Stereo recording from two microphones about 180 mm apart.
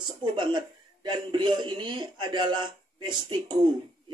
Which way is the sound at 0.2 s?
25° right (ahead or behind).